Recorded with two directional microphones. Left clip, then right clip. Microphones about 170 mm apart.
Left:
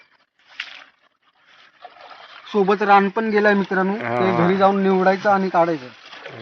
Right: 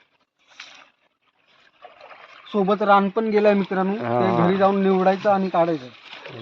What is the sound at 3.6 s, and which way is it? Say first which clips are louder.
Speech: left 3 dB; 25° right (ahead or behind).